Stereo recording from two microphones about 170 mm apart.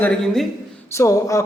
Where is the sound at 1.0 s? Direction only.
20° left (ahead or behind).